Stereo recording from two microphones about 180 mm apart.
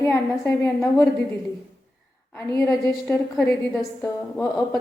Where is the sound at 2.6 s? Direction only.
15° left (ahead or behind).